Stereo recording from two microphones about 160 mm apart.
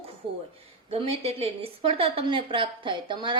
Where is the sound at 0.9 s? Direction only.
40° right (ahead or behind).